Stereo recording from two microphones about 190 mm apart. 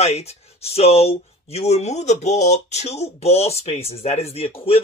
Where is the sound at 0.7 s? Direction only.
30° left (ahead or behind).